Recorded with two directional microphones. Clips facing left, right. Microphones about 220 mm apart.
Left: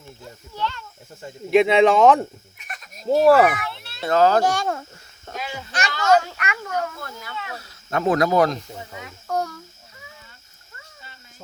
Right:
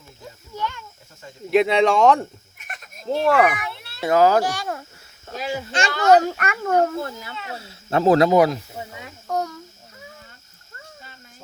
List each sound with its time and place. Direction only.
0.5 s speech: 15° right (ahead or behind)
1.5 s speech: centre (ahead or behind)
3.6 s a child's voice: 10° right (ahead or behind)
5.3 s cricket: 30° right (ahead or behind)
6.0 s a child's voice: 35° right (ahead or behind)
6.7 s speech: 30° right (ahead or behind)
8.3 s speech: 10° right (ahead or behind)
9.3 s a sound: 20° right (ahead or behind)